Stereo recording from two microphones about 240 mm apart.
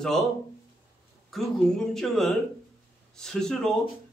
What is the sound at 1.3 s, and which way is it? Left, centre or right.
A man's voice, centre.